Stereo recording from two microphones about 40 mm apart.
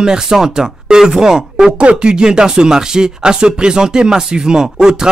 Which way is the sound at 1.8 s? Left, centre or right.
Right.